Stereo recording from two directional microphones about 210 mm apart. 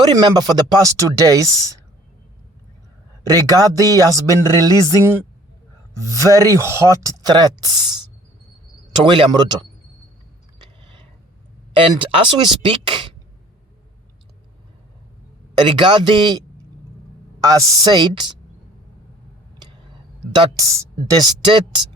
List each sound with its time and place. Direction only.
0.0 s speech: 20° right (ahead or behind)
3.2 s a woman's voice: 15° right (ahead or behind)
11.7 s speech: 25° right (ahead or behind)
15.5 s a woman's voice: 25° right (ahead or behind)
17.4 s a woman's voice: 15° right (ahead or behind)
20.3 s speech: 20° right (ahead or behind)